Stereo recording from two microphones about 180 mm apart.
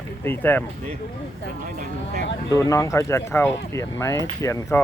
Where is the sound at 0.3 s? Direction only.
10° left (ahead or behind).